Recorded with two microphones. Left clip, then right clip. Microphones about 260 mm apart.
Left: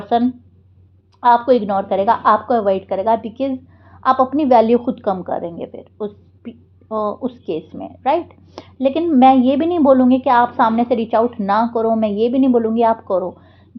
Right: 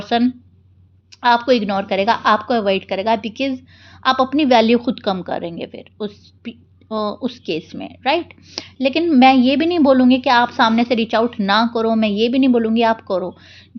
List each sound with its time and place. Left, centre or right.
0.0 s a woman's voice: right